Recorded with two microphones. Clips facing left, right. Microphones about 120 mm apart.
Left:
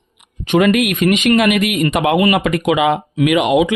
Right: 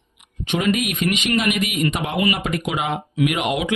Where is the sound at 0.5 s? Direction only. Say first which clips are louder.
Left 8 dB; 65° left (ahead or behind); by 3.6 s 90° left.